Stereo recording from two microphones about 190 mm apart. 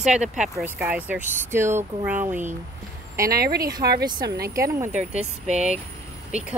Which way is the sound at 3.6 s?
20° right (ahead or behind).